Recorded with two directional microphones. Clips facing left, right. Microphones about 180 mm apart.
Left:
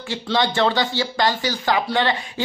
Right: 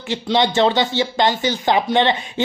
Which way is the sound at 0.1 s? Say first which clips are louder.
Right 4 dB; 20° right (ahead or behind).